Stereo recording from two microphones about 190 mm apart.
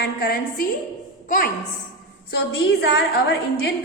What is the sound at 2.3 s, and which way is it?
A woman's voice, 65° left (ahead or behind).